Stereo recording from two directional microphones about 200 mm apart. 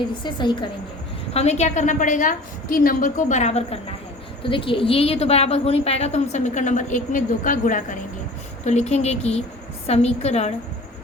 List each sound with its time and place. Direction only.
0.2 s a woman's voice: 20° left (ahead or behind)